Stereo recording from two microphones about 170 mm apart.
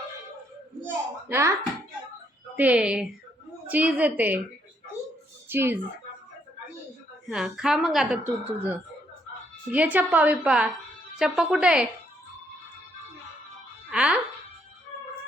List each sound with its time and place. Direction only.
1.3 s a woman's voice: 15° right (ahead or behind)
2.6 s a woman's voice: 5° right (ahead or behind)
5.5 s a woman's voice: 15° right (ahead or behind)
7.3 s a woman's voice: 5° right (ahead or behind)
13.9 s speech: 5° right (ahead or behind)